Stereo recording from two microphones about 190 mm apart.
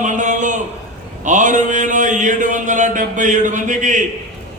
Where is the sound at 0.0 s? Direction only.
40° right (ahead or behind).